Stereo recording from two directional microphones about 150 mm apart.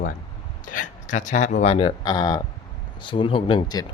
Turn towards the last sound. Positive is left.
turn(degrees=30)  # may be behind; listen again after turning